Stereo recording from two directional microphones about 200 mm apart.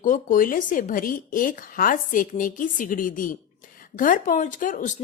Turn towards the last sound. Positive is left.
turn(degrees=40)  # may be behind; listen again after turning